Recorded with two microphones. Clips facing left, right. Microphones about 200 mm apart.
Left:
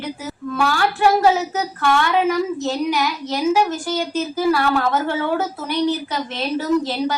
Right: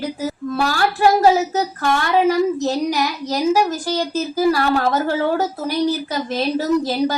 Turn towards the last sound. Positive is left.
turn(degrees=-40)  # may be behind; listen again after turning